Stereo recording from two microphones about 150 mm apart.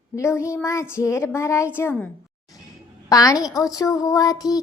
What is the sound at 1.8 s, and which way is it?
Speech, 15° left (ahead or behind).